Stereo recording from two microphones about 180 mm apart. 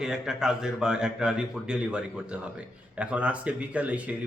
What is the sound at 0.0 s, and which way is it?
Speech, 5° right (ahead or behind).